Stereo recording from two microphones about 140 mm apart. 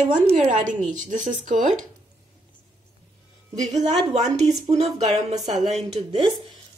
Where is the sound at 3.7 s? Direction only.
30° right (ahead or behind).